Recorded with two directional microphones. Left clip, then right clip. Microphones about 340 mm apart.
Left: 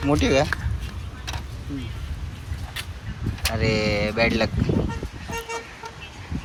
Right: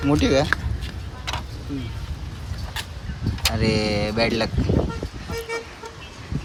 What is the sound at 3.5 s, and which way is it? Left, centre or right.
Speech, centre.